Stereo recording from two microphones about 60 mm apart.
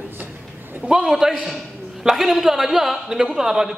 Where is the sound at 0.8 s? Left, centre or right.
Centre.